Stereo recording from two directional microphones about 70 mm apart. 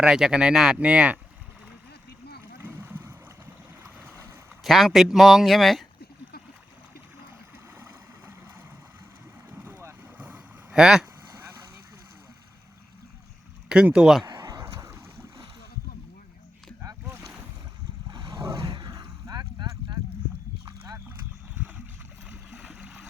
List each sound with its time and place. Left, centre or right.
0.0 s speech: centre
2.6 s boat: right
4.6 s speech: centre
9.6 s boat: right
10.8 s speech: centre
11.3 s vehicle: right
13.7 s speech: centre
14.3 s a sound: right
18.1 s a sound: right
22.5 s a sound: centre